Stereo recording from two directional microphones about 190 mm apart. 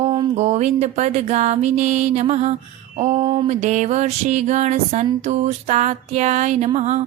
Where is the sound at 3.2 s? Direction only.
25° right (ahead or behind).